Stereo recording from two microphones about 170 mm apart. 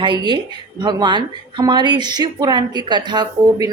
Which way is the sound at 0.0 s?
25° right (ahead or behind).